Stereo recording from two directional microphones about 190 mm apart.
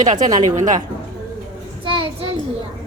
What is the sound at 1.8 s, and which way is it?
Child singing, 30° right (ahead or behind).